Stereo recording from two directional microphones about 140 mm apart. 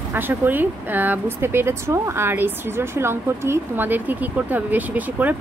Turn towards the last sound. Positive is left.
turn(degrees=-10)  # may be behind; listen again after turning